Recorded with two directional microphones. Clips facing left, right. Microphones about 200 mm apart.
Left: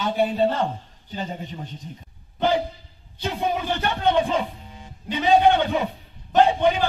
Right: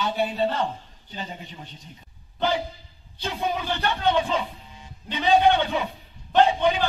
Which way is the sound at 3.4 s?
15° left (ahead or behind).